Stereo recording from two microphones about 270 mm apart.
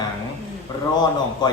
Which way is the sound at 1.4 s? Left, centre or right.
Centre.